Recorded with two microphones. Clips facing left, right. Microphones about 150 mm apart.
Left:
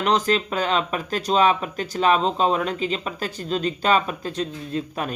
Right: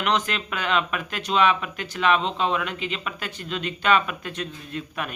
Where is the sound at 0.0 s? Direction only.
35° left (ahead or behind).